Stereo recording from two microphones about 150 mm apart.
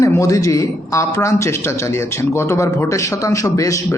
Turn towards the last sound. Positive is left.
turn(degrees=20)  # may be behind; listen again after turning